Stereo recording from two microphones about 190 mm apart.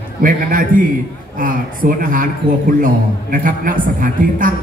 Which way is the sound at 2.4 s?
25° right (ahead or behind).